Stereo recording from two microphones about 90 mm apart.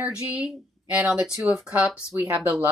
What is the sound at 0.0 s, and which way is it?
Speech, 15° right (ahead or behind).